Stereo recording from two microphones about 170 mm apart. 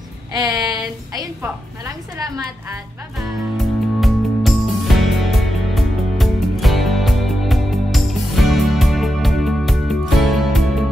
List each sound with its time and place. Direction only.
0.3 s child singing: 25° right (ahead or behind)
1.9 s a woman's voice: 20° right (ahead or behind)
3.2 s music: centre (ahead or behind)